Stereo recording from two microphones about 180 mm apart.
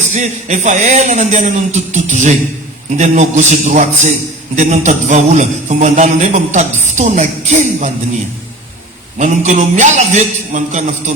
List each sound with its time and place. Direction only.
0.1 s a man's voice: 40° right (ahead or behind)
9.1 s a man's voice: 40° right (ahead or behind)